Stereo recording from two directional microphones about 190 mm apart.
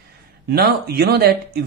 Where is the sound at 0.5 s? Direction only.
55° right (ahead or behind).